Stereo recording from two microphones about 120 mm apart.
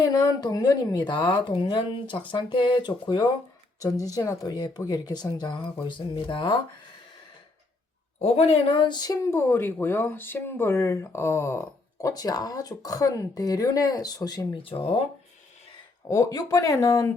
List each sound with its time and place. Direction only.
0.0 s a woman's voice: 30° left (ahead or behind)
8.2 s speech: 60° left (ahead or behind); by 9.1 s 35° left (ahead or behind)
9.2 s speech: 20° left (ahead or behind)
14.6 s speech: 50° left (ahead or behind)
16.0 s speech: 30° left (ahead or behind)